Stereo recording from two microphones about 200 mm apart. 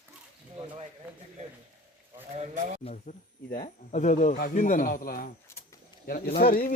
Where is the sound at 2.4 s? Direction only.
35° right (ahead or behind).